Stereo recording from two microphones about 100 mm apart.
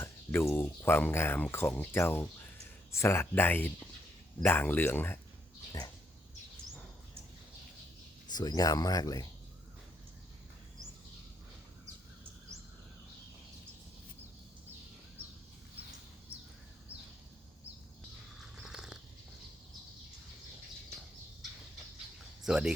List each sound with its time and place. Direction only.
0.0 s a sound: 25° left (ahead or behind)
0.5 s speech: 25° left (ahead or behind)
8.3 s speech: 45° left (ahead or behind)
18.3 s biting: 5° right (ahead or behind)
22.4 s speech: 5° right (ahead or behind)